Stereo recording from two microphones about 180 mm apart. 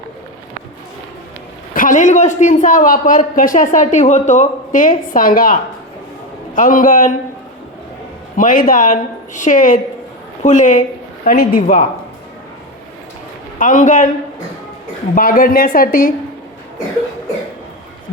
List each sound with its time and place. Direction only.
1.7 s a man's voice: 45° left (ahead or behind)
6.6 s a man's voice: 50° left (ahead or behind)
8.4 s a man's voice: 50° left (ahead or behind)
13.6 s a man's voice: 45° left (ahead or behind)
15.1 s a man's voice: 50° left (ahead or behind)